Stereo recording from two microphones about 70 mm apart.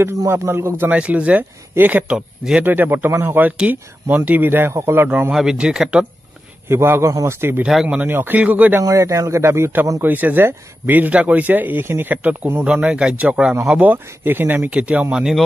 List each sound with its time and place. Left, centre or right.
0.3 s a man's voice: right
0.8 s speech: centre
2.1 s a man's voice: centre
2.6 s speech: right
5.3 s a man's voice: centre
6.7 s a man's voice: right
7.6 s a man's voice: centre
8.1 s speech: right
8.8 s speech: right
10.0 s speech: right
12.6 s a man's voice: centre
14.7 s a man's voice: centre